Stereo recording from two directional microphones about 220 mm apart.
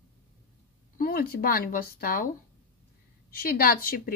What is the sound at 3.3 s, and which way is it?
Speech, 40° left (ahead or behind).